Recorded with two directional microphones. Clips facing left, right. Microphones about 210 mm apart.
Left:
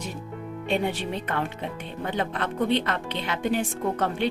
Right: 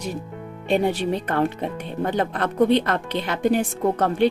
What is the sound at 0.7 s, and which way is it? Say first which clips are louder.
A woman's voice: right 6 dB; 40° right (ahead or behind).